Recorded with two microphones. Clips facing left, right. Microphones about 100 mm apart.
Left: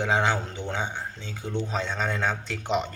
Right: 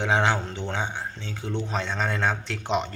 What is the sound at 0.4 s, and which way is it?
Speech, 10° left (ahead or behind).